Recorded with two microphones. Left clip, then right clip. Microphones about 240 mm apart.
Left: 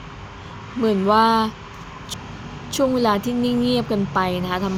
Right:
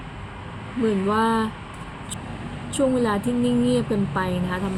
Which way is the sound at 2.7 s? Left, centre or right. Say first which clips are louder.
Left 3 dB; left.